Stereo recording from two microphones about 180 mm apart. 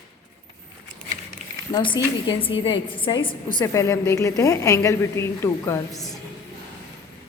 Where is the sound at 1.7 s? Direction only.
25° left (ahead or behind).